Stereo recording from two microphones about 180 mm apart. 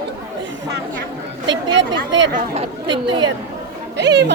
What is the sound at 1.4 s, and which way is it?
Chatter, 85° right.